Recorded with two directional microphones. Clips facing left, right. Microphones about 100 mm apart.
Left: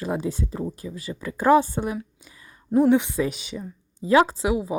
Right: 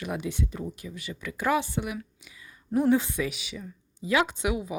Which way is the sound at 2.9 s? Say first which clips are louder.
Left 4 dB; 25° left (ahead or behind).